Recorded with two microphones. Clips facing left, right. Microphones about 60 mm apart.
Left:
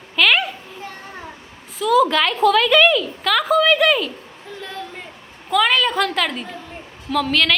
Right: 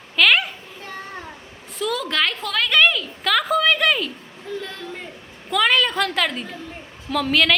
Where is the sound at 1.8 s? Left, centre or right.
Centre.